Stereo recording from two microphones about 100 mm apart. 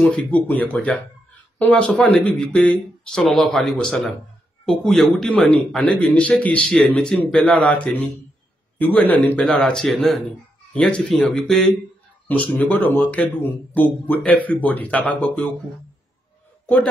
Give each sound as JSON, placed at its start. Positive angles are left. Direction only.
{"t": 0.1, "sound": "speech", "side_deg": 15}
{"t": 12.3, "sound": "speech", "side_deg": 20}